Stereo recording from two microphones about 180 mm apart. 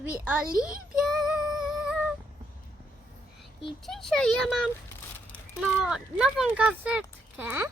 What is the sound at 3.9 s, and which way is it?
Speech, centre (ahead or behind).